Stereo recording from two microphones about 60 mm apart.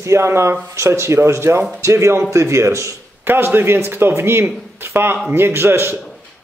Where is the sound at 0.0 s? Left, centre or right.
Right.